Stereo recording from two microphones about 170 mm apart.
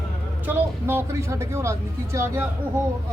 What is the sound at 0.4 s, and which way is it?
Speech, 15° right (ahead or behind).